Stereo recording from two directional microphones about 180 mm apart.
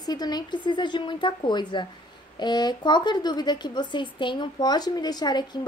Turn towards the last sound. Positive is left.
turn(degrees=25)  # may be behind; listen again after turning